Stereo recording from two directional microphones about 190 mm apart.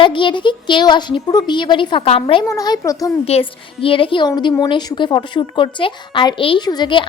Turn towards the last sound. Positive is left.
turn(degrees=25)  # may be behind; listen again after turning